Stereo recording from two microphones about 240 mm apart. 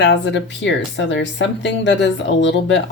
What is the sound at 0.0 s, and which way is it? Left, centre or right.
Speech, left.